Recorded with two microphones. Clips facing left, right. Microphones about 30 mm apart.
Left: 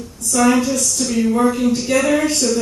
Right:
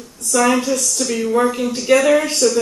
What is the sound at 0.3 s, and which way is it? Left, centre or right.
Speech, centre.